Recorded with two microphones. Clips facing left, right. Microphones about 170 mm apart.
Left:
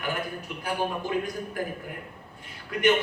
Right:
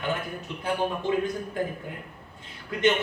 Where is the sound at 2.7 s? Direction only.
25° right (ahead or behind).